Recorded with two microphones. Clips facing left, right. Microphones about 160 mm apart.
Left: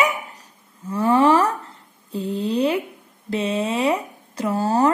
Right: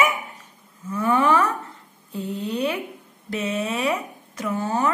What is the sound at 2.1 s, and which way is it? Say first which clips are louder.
A woman's voice: left 4 dB; 30° left (ahead or behind).